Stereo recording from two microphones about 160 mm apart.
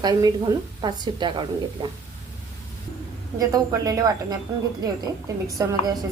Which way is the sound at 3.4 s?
20° right (ahead or behind).